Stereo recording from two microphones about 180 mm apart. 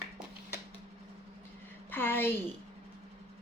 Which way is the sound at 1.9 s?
10° left (ahead or behind).